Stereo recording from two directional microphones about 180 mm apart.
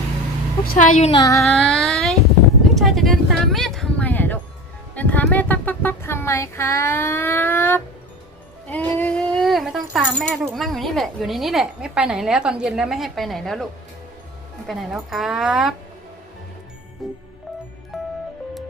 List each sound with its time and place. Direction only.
0.7 s a woman's voice: 45° left (ahead or behind)
1.1 s a sound: 20° left (ahead or behind)
1.4 s child singing: centre (ahead or behind)
2.7 s speech: centre (ahead or behind)
14.7 s speech: centre (ahead or behind)
17.0 s speech: centre (ahead or behind)
17.9 s music: centre (ahead or behind)